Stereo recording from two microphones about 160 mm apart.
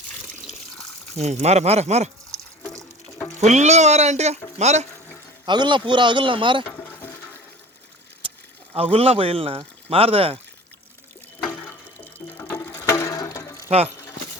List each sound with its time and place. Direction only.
1.1 s speech: 45° right (ahead or behind)
3.4 s speech: 45° right (ahead or behind)
5.5 s speech: 30° right (ahead or behind)
6.7 s a sound: 15° left (ahead or behind)
8.2 s a sound: 35° right (ahead or behind)
8.7 s speech: 35° right (ahead or behind)
11.4 s music: 10° left (ahead or behind)